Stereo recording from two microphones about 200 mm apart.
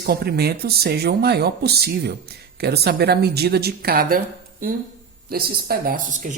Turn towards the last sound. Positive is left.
turn(degrees=-40)  # may be behind; listen again after turning